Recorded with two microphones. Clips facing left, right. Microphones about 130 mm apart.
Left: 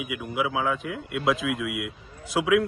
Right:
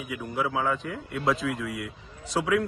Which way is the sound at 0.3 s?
Centre (ahead or behind).